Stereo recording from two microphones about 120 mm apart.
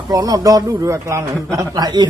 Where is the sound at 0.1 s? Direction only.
30° right (ahead or behind).